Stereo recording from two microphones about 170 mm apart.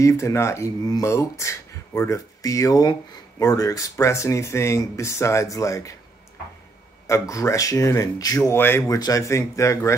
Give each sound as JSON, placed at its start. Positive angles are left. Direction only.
{"t": 0.0, "sound": "speech", "side_deg": 15}
{"t": 7.1, "sound": "speech", "side_deg": 15}